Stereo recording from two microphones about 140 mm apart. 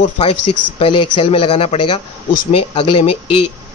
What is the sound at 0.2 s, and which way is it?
Speech, 40° left (ahead or behind).